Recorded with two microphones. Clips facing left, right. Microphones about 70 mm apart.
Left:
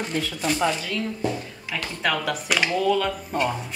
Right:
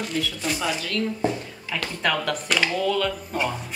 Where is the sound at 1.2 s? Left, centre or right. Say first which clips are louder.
Right 1 dB; right.